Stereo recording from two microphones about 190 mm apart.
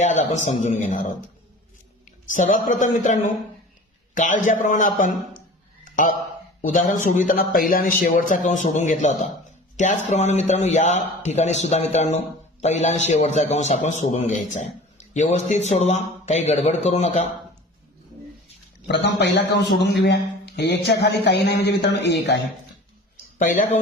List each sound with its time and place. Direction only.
0.0 s a man's voice: 40° left (ahead or behind)
2.3 s a man's voice: 40° left (ahead or behind)
5.8 s a sound: 45° left (ahead or behind)
6.6 s a man's voice: 45° left (ahead or behind)
18.9 s a man's voice: 65° left (ahead or behind)
23.4 s speech: 45° left (ahead or behind)